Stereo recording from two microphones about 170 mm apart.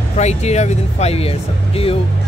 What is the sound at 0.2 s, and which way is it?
Speech, 40° left (ahead or behind).